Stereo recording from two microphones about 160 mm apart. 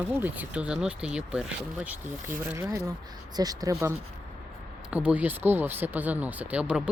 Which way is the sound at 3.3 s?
25° right (ahead or behind).